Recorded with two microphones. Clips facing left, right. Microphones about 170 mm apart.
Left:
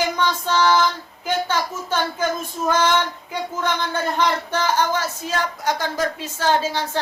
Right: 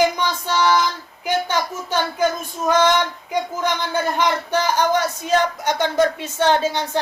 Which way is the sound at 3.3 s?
15° right (ahead or behind).